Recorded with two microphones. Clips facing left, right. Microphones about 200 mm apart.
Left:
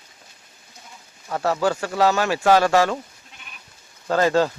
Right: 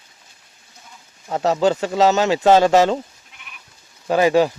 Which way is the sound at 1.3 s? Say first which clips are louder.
Right 4 dB; 20° right (ahead or behind).